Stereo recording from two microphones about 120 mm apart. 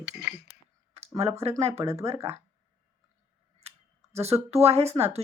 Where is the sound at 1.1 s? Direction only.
60° right (ahead or behind).